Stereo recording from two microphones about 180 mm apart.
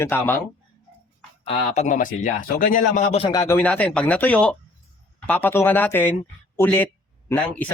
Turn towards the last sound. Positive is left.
turn(degrees=10)  # may be behind; listen again after turning